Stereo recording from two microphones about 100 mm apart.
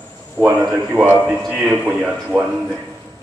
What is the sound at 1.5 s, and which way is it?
Speech, 15° right (ahead or behind).